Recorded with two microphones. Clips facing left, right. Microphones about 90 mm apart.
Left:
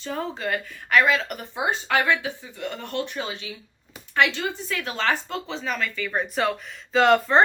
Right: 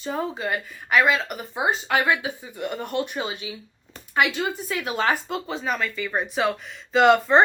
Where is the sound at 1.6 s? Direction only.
15° right (ahead or behind).